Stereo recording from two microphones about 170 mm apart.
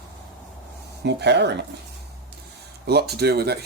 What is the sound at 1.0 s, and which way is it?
Speech, 90° right.